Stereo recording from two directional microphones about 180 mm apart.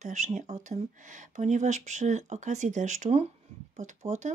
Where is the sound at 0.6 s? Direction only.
45° right (ahead or behind).